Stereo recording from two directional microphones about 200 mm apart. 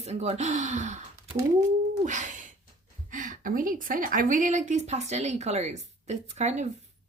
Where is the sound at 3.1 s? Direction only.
40° right (ahead or behind).